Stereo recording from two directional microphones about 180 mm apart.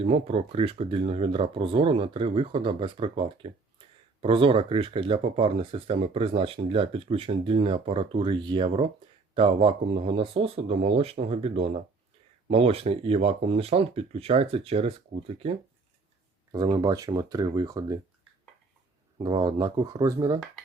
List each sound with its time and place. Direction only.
0.0 s speech: 35° right (ahead or behind)
16.5 s speech: 25° right (ahead or behind)
19.2 s speech: 20° right (ahead or behind)